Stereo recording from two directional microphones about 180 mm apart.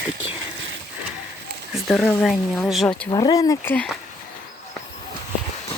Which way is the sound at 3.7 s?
5° left (ahead or behind).